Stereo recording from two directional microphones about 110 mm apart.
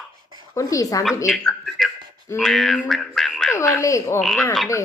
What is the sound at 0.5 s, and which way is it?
Speech, 30° left (ahead or behind).